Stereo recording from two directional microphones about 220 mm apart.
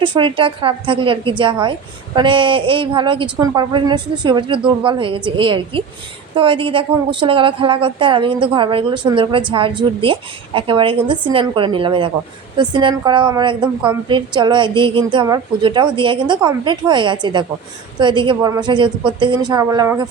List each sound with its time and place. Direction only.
0.0 s a woman's voice: 20° right (ahead or behind)